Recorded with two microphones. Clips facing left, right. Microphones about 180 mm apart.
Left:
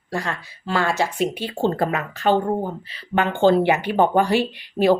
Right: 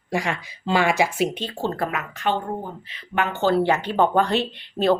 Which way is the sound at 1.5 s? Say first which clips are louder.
Left 6 dB; 25° left (ahead or behind).